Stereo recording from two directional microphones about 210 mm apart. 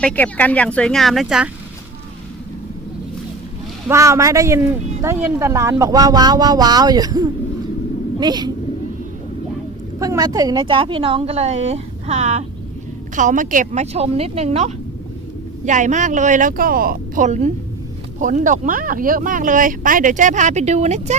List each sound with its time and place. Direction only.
0.0 s speech: 5° left (ahead or behind)
3.8 s a woman's voice: 15° right (ahead or behind)
10.0 s a woman's voice: 15° right (ahead or behind); by 21.2 s 30° right (ahead or behind)